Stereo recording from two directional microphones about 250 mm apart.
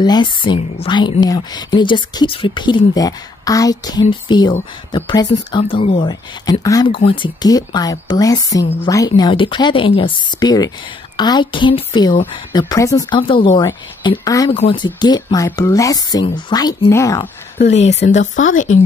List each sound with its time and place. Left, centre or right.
0.0 s speech: centre
18.0 s speech: left